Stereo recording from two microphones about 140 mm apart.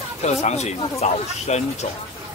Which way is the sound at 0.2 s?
50° left (ahead or behind).